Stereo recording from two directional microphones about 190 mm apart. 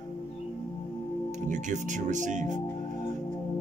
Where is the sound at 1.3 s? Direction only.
40° right (ahead or behind).